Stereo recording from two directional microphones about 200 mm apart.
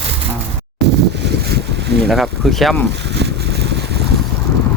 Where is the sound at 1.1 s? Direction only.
55° right (ahead or behind).